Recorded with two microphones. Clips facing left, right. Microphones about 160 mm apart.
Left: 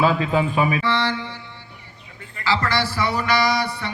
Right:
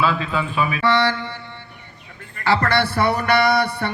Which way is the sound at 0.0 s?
45° left (ahead or behind).